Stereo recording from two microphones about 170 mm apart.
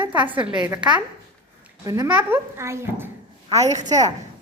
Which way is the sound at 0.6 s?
20° right (ahead or behind).